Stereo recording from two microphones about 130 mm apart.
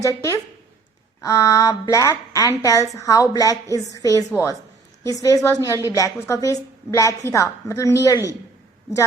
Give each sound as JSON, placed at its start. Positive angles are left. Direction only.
{"t": 0.0, "sound": "a woman's voice", "side_deg": 25}